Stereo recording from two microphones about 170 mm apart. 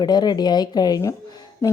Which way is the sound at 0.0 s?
25° left (ahead or behind).